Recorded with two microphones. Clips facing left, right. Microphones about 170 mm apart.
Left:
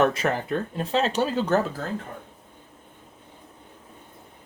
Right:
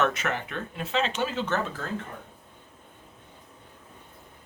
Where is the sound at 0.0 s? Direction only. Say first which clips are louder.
Left 5 dB; 35° left (ahead or behind).